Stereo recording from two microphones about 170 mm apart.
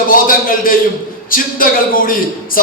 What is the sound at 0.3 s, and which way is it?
A man's voice, 55° left (ahead or behind).